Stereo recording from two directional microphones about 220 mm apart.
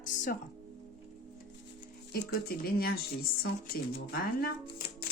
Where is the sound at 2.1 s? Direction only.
45° left (ahead or behind).